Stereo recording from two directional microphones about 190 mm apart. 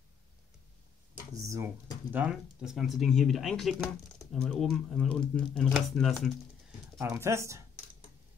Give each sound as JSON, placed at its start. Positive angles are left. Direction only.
{"t": 1.3, "sound": "speech", "side_deg": -15}
{"t": 7.0, "sound": "speech", "side_deg": -15}